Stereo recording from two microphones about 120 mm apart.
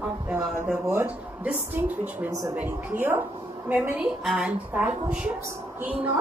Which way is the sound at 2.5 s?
15° right (ahead or behind).